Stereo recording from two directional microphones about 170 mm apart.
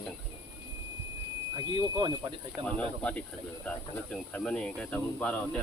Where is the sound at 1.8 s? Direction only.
25° right (ahead or behind).